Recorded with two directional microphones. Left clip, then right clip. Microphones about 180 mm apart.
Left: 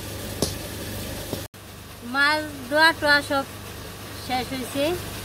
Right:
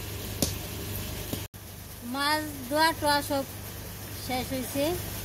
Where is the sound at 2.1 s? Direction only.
30° right (ahead or behind).